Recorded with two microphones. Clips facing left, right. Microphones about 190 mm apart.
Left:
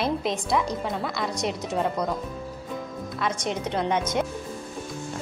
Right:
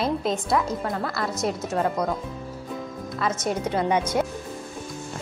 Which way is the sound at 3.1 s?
5° right (ahead or behind).